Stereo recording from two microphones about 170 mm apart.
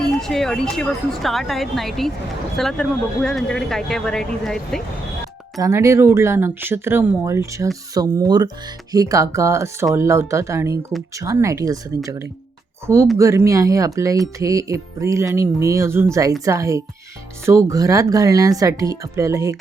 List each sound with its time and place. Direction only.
0.2 s speech: centre (ahead or behind)
5.5 s speech: 20° right (ahead or behind)
13.1 s speech: 15° right (ahead or behind)